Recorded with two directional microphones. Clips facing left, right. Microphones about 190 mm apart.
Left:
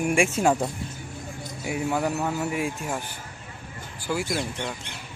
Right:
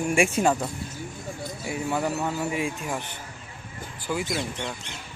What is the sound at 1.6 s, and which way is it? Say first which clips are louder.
Speech: left 2 dB; 10° left (ahead or behind).